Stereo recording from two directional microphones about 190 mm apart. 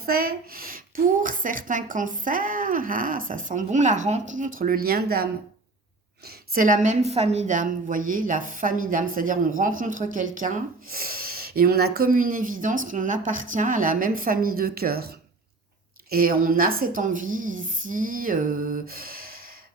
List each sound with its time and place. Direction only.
0.0 s a woman's voice: 50° right (ahead or behind)